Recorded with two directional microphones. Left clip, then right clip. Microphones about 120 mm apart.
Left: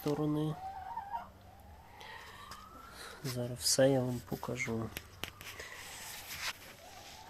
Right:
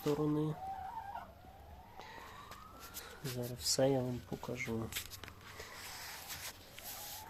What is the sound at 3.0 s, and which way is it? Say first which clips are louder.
Speech: left 3 dB; 30° left (ahead or behind).